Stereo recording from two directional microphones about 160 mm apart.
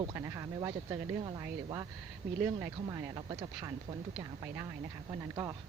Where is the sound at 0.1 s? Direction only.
20° right (ahead or behind).